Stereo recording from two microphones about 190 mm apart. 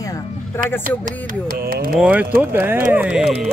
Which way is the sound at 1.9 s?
5° right (ahead or behind).